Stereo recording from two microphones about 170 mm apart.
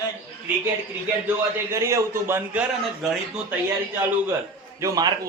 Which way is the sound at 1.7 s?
15° right (ahead or behind).